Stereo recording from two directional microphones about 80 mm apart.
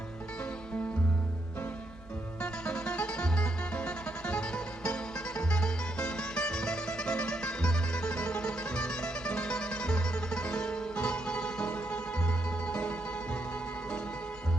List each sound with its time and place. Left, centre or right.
2.4 s music: centre